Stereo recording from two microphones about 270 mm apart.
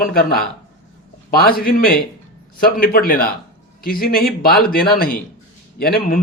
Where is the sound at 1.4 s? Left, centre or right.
Left.